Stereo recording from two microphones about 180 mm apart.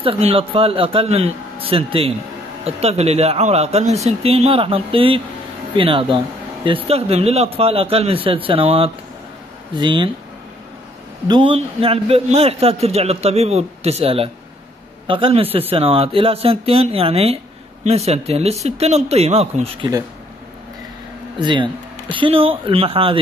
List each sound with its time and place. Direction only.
0.0 s speech: 30° right (ahead or behind)
11.2 s speech: 25° right (ahead or behind)
21.4 s speech: 25° right (ahead or behind)